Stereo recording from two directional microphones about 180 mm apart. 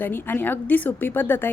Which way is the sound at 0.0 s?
10° left (ahead or behind).